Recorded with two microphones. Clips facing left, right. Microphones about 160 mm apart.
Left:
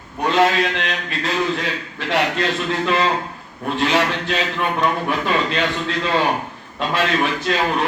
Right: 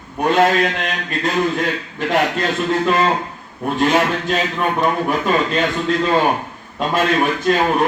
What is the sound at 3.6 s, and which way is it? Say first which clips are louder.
A man's voice: right 3 dB; 45° right (ahead or behind).